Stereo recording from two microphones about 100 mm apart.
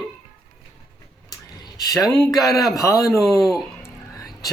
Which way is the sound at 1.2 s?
40° left (ahead or behind).